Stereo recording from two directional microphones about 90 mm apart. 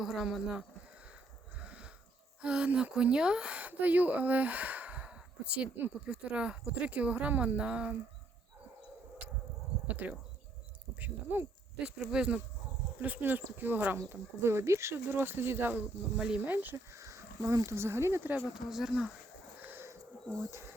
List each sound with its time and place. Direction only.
0.0 s speech: 5° right (ahead or behind)
1.5 s sheep: 15° right (ahead or behind)
2.4 s speech: 10° right (ahead or behind)
9.8 s speech: 20° right (ahead or behind)
16.1 s speech: 10° right (ahead or behind)
16.4 s speech: 20° right (ahead or behind)
16.7 s speech: 35° right (ahead or behind)
18.5 s speech: 5° right (ahead or behind)
19.6 s a sound: 25° right (ahead or behind)
20.4 s speech: 30° right (ahead or behind)